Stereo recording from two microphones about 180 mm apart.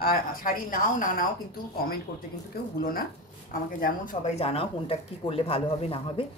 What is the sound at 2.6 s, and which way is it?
Speech, 60° left (ahead or behind).